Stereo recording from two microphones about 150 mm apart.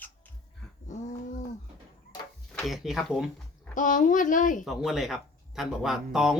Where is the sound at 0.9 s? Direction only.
60° left (ahead or behind).